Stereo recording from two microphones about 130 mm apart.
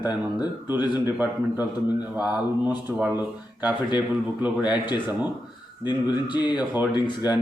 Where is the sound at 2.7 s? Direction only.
15° right (ahead or behind).